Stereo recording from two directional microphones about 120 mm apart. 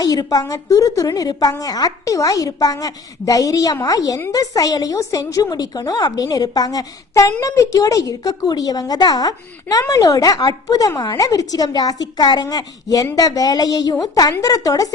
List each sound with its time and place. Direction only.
0.0 s a woman's voice: 30° left (ahead or behind)